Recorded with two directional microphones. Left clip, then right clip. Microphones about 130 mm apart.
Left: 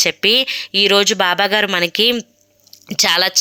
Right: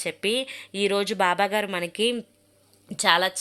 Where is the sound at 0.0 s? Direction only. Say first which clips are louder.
Left 12 dB; 25° left (ahead or behind).